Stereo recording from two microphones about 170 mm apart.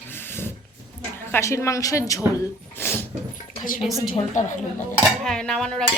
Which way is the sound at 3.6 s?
50° left (ahead or behind).